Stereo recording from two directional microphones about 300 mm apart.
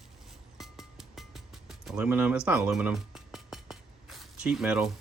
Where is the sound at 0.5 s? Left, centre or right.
Centre.